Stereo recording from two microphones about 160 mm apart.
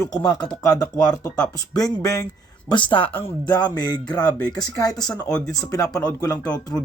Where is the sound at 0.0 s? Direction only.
25° left (ahead or behind).